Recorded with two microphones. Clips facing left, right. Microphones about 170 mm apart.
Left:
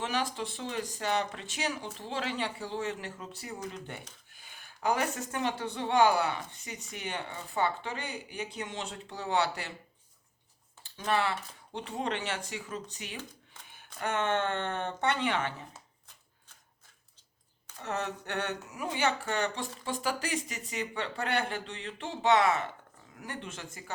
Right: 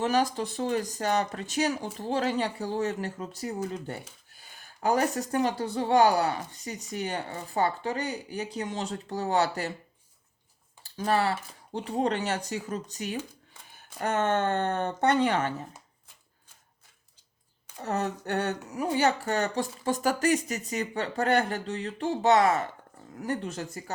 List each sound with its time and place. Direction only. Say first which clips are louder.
0.0 s speech: right 7 dB; 40° right (ahead or behind)
10.8 s speech: right 4 dB; 40° right (ahead or behind)
17.8 s speech: right 5 dB; 40° right (ahead or behind)